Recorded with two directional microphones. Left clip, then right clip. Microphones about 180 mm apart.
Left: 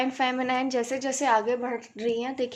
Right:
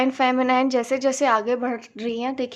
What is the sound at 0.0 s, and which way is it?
A woman's voice, 35° right (ahead or behind).